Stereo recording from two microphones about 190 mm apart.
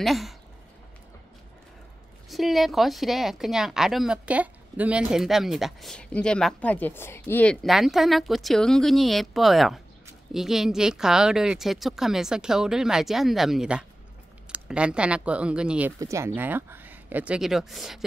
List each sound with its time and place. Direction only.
0.0 s speech: centre (ahead or behind)
2.2 s speech: centre (ahead or behind)
16.0 s speech: 15° right (ahead or behind)